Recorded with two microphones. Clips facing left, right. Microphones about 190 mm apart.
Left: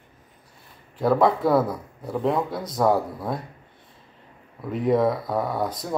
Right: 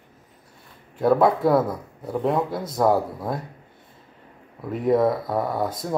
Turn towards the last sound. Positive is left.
turn(degrees=0)  # may be behind; listen again after turning